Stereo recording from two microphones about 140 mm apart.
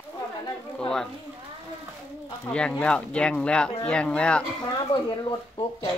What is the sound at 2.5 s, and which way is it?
Speech, 5° left (ahead or behind).